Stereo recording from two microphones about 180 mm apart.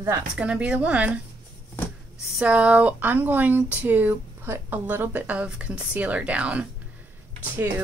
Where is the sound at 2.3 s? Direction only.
5° right (ahead or behind).